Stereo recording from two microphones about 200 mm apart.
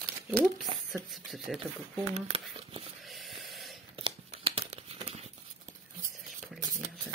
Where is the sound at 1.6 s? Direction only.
30° right (ahead or behind).